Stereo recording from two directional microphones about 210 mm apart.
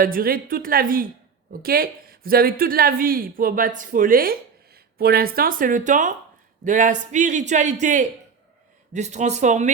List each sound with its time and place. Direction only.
0.0 s speech: 45° right (ahead or behind)